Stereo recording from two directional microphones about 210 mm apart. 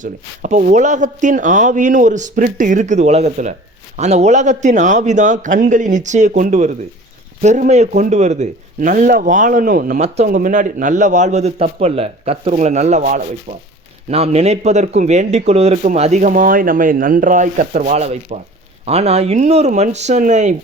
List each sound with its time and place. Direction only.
0.0 s speech: 35° right (ahead or behind)